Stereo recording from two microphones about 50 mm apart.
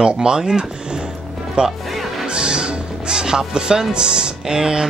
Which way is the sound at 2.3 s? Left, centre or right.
Centre.